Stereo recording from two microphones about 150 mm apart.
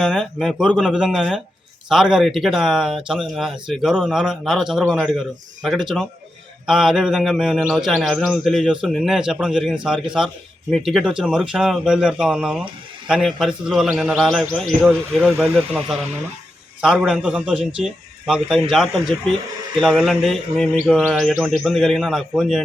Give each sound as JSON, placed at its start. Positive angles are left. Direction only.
{"t": 0.0, "sound": "a man's voice", "side_deg": 0}